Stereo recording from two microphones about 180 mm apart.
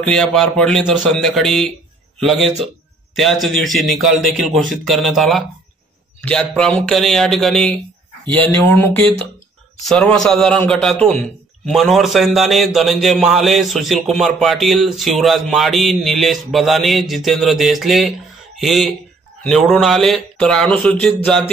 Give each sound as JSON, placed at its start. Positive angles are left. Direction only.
{"t": 0.0, "sound": "a man's voice", "side_deg": 5}